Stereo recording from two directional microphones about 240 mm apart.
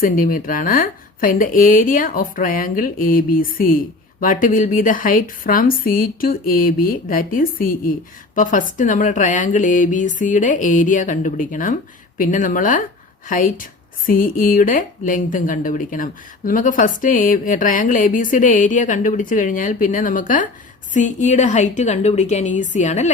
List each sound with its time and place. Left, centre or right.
0.0 s a woman's voice: left